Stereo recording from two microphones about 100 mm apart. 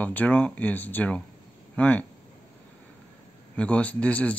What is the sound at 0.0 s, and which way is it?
Speech, 15° left (ahead or behind).